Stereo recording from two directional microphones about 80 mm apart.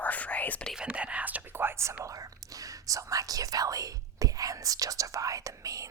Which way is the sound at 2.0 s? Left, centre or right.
Right.